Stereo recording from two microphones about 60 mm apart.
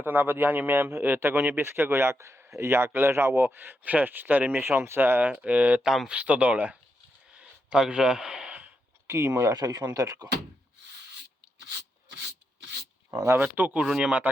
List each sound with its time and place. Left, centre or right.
0.0 s speech: right
4.6 s speech: right
5.3 s a man's voice: right
9.0 s speech: right
13.3 s speech: right
13.8 s speech: centre